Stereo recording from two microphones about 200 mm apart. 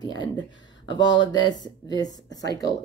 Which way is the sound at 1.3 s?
20° left (ahead or behind).